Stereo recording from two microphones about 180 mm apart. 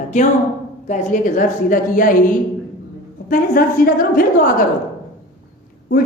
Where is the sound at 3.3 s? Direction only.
50° left (ahead or behind).